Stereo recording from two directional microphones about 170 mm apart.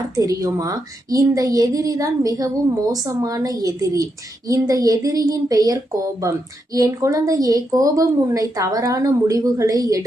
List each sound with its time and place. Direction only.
0.2 s a woman's voice: 20° right (ahead or behind)